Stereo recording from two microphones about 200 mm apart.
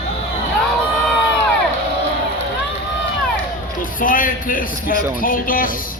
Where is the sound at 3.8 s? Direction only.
40° left (ahead or behind).